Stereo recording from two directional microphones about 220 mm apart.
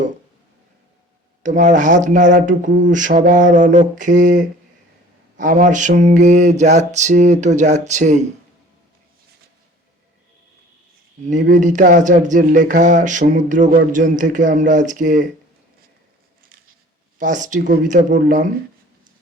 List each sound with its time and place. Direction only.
1.4 s speech: 35° right (ahead or behind)
11.4 s speech: 35° right (ahead or behind)
17.2 s speech: 35° right (ahead or behind)